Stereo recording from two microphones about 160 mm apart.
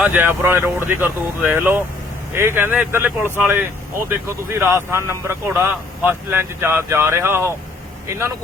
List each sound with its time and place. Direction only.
0.0 s speech: 10° right (ahead or behind)